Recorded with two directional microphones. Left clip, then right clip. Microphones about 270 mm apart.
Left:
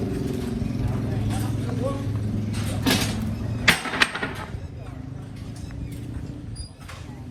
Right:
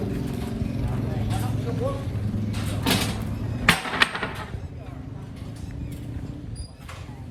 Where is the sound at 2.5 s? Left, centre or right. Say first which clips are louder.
Left 1 dB; centre.